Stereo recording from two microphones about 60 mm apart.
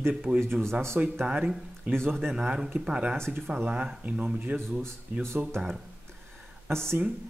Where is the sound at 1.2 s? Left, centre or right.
Centre.